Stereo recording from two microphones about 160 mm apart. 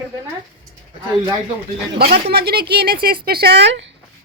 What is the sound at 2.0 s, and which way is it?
Speech, 85° right.